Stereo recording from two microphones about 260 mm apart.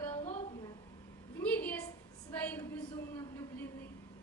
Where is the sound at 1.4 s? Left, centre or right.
Centre.